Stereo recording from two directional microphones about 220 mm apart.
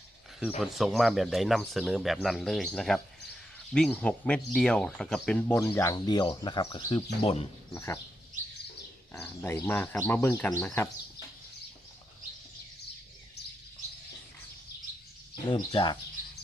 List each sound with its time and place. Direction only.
0.6 s speech: centre (ahead or behind); by 7.4 s 25° left (ahead or behind)
7.7 s speech: 10° left (ahead or behind)
9.1 s speech: 10° left (ahead or behind)
15.4 s speech: 20° left (ahead or behind)